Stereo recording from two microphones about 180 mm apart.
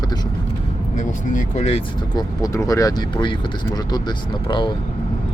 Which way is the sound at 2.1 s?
20° left (ahead or behind).